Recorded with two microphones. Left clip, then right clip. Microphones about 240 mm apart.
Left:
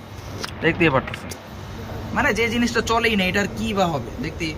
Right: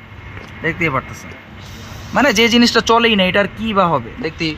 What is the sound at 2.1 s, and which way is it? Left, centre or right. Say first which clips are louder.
A man's voice: right 8 dB; right.